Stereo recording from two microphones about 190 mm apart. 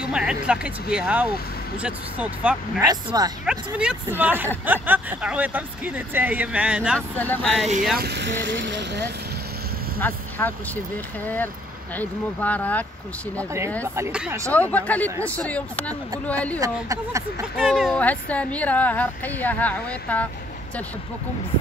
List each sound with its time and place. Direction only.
0.0 s speech: 5° right (ahead or behind)
2.8 s speech: 20° right (ahead or behind)
3.4 s speech: 5° right (ahead or behind)
7.0 s speech: 10° left (ahead or behind)
8.0 s speech: 65° right (ahead or behind)
10.0 s speech: 10° left (ahead or behind)
13.9 s speech: 10° right (ahead or behind)
14.5 s speech: 10° left (ahead or behind)
16.5 s speech: 20° right (ahead or behind)
17.6 s speech: 5° right (ahead or behind)